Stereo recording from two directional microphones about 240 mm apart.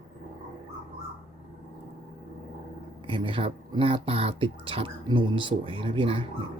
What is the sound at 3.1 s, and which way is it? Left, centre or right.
Speech, right.